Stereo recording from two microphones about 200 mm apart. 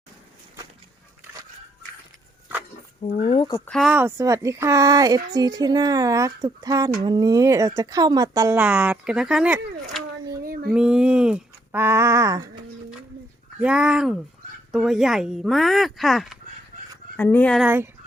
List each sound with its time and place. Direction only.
3.2 s speech: 30° left (ahead or behind)
3.7 s speech: centre (ahead or behind); by 8.5 s 15° right (ahead or behind)
8.5 s speech: 5° right (ahead or behind)
10.4 s a sound: 45° right (ahead or behind)
10.7 s speech: 5° right (ahead or behind)
13.6 s speech: 5° right (ahead or behind)